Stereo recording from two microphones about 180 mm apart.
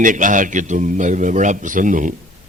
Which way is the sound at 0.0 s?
45° right (ahead or behind).